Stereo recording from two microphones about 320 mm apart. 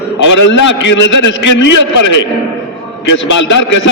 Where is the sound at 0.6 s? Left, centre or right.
Left.